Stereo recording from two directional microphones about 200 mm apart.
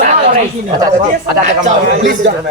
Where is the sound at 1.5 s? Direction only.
40° right (ahead or behind).